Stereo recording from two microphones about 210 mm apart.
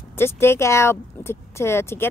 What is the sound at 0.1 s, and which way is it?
Speech, 10° left (ahead or behind).